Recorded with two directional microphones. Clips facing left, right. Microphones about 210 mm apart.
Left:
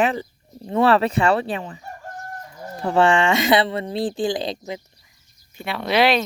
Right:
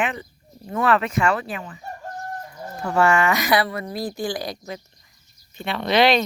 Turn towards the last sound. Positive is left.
turn(degrees=5)  # may be behind; listen again after turning